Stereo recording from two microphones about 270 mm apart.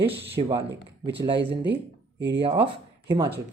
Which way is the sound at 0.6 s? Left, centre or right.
Right.